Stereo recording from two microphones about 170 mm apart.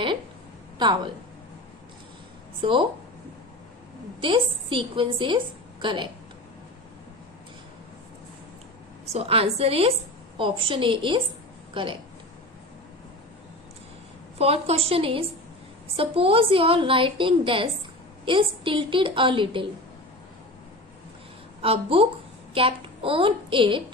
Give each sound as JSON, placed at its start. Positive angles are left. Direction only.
{"t": 2.6, "sound": "a woman's voice", "side_deg": -30}
{"t": 4.2, "sound": "a woman's voice", "side_deg": -30}
{"t": 9.1, "sound": "a woman's voice", "side_deg": -35}
{"t": 14.3, "sound": "a woman's voice", "side_deg": -35}
{"t": 21.6, "sound": "a woman's voice", "side_deg": -35}